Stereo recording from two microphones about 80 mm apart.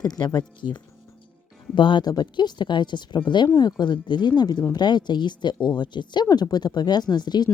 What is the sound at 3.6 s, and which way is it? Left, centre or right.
Speech, left.